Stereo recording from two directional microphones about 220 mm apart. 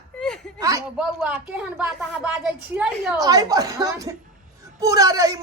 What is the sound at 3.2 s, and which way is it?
Speech, 15° right (ahead or behind).